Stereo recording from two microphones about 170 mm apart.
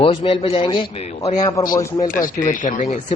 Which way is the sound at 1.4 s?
20° left (ahead or behind).